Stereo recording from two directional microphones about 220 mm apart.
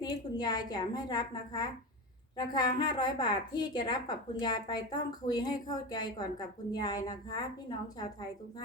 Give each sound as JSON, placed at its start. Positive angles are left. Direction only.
{"t": 0.0, "sound": "a woman's voice", "side_deg": 20}